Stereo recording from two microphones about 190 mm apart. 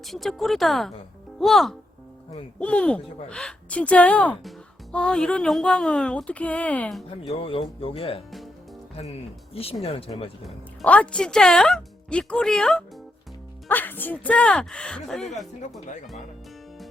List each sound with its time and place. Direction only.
0.0 s speech: centre (ahead or behind)
7.2 s speech: 30° left (ahead or behind)
9.8 s speech: 30° left (ahead or behind)
10.4 s speech: 5° left (ahead or behind)